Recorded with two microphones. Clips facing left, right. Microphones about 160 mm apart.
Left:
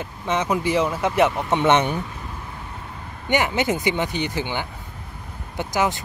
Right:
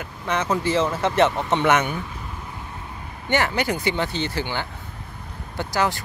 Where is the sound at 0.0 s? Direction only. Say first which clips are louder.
Left 1 dB; 20° left (ahead or behind).